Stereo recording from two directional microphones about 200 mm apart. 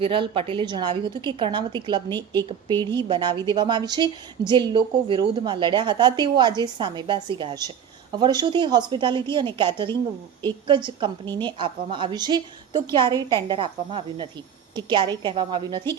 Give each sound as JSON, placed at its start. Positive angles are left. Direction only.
{"t": 0.0, "sound": "speech", "side_deg": -25}